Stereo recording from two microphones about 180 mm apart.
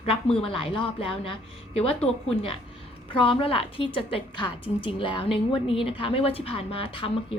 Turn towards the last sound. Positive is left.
turn(degrees=30)  # may be behind; listen again after turning